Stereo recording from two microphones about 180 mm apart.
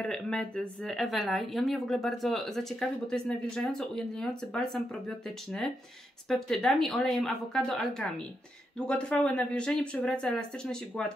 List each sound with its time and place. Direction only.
0.0 s speech: 5° left (ahead or behind)
6.2 s speech: 5° left (ahead or behind)